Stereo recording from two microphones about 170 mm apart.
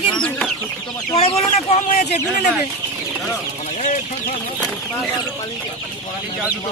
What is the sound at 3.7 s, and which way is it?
Chicken, 45° left (ahead or behind).